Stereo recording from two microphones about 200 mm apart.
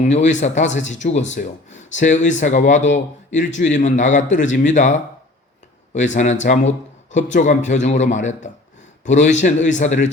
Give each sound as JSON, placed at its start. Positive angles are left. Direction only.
{"t": 0.0, "sound": "speech", "side_deg": 35}